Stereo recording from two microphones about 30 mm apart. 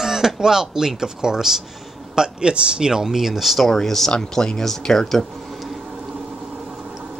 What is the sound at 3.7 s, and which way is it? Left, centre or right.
Speech, centre.